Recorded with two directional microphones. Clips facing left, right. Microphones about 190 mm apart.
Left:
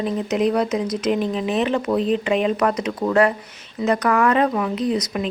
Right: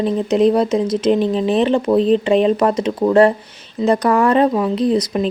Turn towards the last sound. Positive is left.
turn(degrees=-30)  # may be behind; listen again after turning